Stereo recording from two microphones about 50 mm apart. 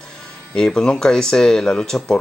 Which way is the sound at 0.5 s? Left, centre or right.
Centre.